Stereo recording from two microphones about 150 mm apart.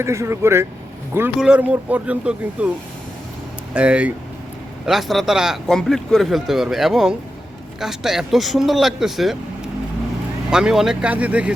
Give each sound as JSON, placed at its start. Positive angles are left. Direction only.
{"t": 0.0, "sound": "speech", "side_deg": -20}
{"t": 3.8, "sound": "speech", "side_deg": -10}
{"t": 10.5, "sound": "speech", "side_deg": -5}